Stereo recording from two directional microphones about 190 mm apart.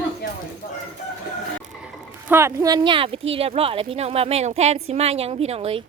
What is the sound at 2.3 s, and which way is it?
A woman's voice, 15° right (ahead or behind).